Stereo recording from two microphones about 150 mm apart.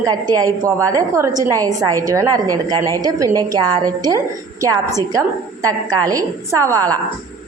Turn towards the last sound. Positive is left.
turn(degrees=-20)  # may be behind; listen again after turning